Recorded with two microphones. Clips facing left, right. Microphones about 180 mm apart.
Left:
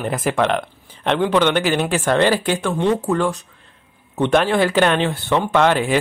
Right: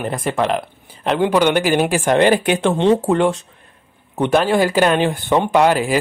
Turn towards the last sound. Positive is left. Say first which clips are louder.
# right 2 dB
turn(degrees=-10)  # may be behind; listen again after turning